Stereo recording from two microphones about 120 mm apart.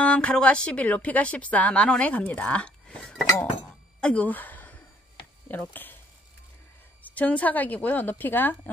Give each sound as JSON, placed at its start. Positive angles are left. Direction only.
{"t": 0.0, "sound": "speech", "side_deg": 10}
{"t": 4.0, "sound": "a sound", "side_deg": 10}
{"t": 5.5, "sound": "speech", "side_deg": 15}
{"t": 7.0, "sound": "speech", "side_deg": 10}